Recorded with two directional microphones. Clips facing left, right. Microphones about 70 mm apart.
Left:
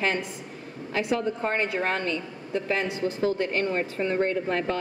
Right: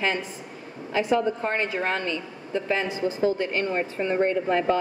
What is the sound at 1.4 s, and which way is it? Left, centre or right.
Speech, centre.